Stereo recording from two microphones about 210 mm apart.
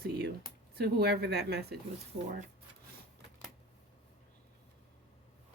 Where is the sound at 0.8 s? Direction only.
50° right (ahead or behind).